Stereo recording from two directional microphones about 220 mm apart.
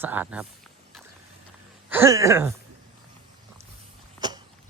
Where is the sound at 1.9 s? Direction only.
10° right (ahead or behind).